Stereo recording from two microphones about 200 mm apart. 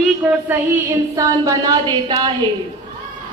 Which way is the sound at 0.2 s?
5° right (ahead or behind).